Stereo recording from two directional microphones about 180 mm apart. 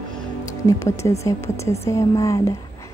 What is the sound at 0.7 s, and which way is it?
A woman's voice, 15° left (ahead or behind).